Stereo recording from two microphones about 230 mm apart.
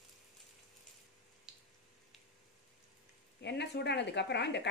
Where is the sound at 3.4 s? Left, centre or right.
Left.